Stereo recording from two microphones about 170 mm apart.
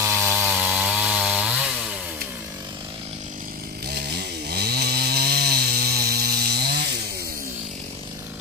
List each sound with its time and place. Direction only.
0.0 s chainsaw: 15° right (ahead or behind)
4.5 s chainsaw: 70° right (ahead or behind)